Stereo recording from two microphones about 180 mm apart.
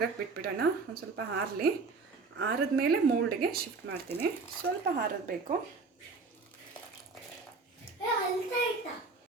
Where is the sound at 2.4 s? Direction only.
60° right (ahead or behind).